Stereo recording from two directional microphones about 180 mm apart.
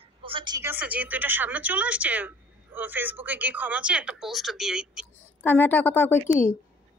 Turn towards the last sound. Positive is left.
turn(degrees=15)  # may be behind; listen again after turning